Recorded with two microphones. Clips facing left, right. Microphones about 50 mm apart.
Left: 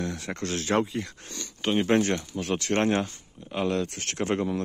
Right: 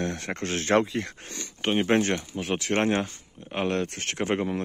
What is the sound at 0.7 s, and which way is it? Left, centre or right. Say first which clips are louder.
Speech: right 4 dB; right.